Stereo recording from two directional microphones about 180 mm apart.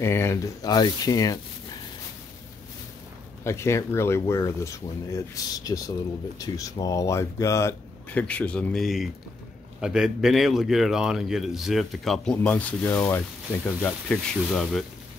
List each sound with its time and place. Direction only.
0.0 s speech: 15° left (ahead or behind)
3.4 s speech: 15° left (ahead or behind)